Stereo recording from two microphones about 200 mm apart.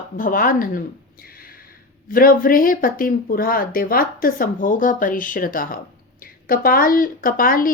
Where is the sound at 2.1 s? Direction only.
45° left (ahead or behind).